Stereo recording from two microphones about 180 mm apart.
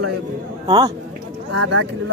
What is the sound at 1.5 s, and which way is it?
Speech, 90° right.